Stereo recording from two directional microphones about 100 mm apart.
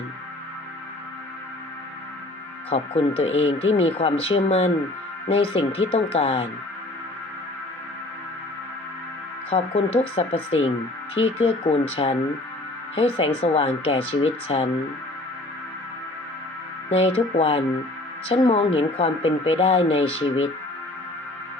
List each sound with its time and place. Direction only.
2.6 s speech: 85° left
5.3 s speech: 75° left (ahead or behind)
9.5 s speech: 90° left
10.2 s speech: 75° left (ahead or behind)
11.3 s speech: 90° left
16.9 s speech: 85° left; by 20.5 s 70° left (ahead or behind)